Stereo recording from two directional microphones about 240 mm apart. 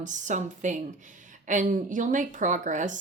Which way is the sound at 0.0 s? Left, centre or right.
Right.